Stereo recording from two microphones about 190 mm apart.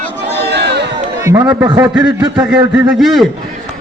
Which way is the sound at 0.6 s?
60° right (ahead or behind).